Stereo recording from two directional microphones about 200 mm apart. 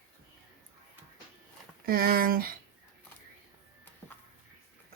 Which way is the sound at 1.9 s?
50° right (ahead or behind).